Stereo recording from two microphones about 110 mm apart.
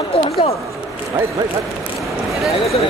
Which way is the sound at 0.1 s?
60° left (ahead or behind).